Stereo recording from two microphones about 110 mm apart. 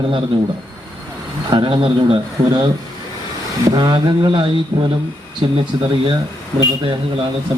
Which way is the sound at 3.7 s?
40° right (ahead or behind).